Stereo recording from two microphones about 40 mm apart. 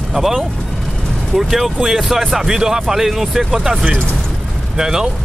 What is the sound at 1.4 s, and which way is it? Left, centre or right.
Speech, centre.